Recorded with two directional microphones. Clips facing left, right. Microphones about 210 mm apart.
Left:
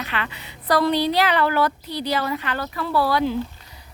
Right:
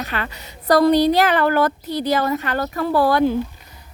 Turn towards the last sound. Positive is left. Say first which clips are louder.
# right 4 dB
turn(degrees=-50)  # may be behind; listen again after turning